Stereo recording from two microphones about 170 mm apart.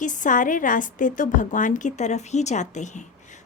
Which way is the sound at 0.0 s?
50° left (ahead or behind).